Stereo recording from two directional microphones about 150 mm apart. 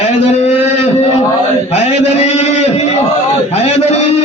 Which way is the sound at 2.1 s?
45° left (ahead or behind).